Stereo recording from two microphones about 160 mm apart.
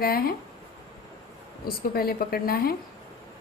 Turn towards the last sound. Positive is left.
turn(degrees=70)  # may be behind; listen again after turning